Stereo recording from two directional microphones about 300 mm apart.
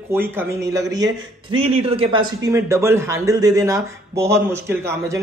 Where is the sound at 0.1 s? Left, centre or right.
Centre.